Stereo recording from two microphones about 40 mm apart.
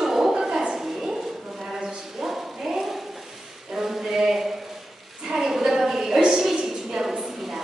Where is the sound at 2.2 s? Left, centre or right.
Centre.